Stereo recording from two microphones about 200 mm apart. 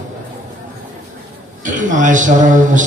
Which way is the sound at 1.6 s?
40° right (ahead or behind).